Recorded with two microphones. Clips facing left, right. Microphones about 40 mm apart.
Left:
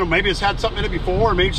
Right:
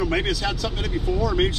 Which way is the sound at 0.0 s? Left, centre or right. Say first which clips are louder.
Left 6 dB; left.